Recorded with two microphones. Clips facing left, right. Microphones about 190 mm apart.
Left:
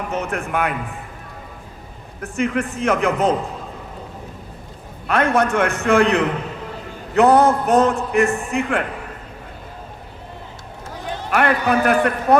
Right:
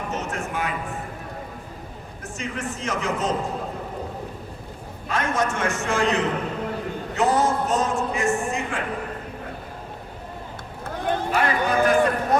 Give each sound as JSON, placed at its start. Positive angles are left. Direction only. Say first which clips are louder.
{"t": 0.1, "sound": "music", "louder": "left 7 dB", "side_deg": 60}
{"t": 2.2, "sound": "a man's voice", "louder": "left 9 dB", "side_deg": 60}
{"t": 5.0, "sound": "a man's voice", "louder": "left 7 dB", "side_deg": 60}
{"t": 10.8, "sound": "run", "louder": "right 5 dB", "side_deg": -55}
{"t": 11.3, "sound": "a man's voice", "louder": "left 7 dB", "side_deg": 65}